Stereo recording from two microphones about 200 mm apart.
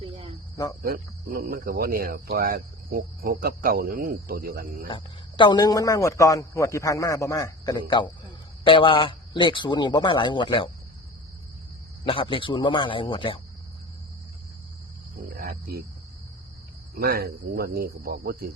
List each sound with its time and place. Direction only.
0.0 s cricket: 25° right (ahead or behind)
0.8 s speech: 50° right (ahead or behind)
4.9 s a man's voice: 25° left (ahead or behind)
12.0 s a man's voice: 25° left (ahead or behind)
15.4 s cricket: 50° right (ahead or behind)
17.0 s speech: 50° right (ahead or behind)